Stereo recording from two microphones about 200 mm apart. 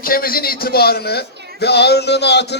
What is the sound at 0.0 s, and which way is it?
A man's voice, 45° left (ahead or behind).